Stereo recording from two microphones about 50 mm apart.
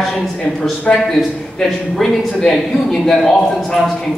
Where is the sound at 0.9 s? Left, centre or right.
Left.